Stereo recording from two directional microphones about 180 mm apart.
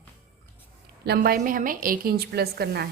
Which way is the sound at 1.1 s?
55° right (ahead or behind).